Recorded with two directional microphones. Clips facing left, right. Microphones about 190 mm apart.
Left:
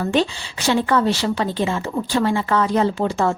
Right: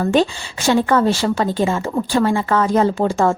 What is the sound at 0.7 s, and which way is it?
A woman's voice, 45° right (ahead or behind).